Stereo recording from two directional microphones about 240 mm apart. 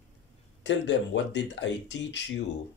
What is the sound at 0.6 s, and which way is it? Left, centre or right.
Speech, left.